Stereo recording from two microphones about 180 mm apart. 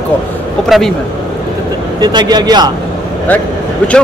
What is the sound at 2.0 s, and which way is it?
Speech, 25° right (ahead or behind).